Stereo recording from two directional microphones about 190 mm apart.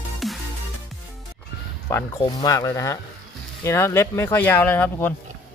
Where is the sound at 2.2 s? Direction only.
20° left (ahead or behind).